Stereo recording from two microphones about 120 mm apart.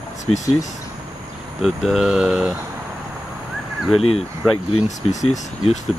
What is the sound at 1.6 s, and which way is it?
Speech, centre (ahead or behind).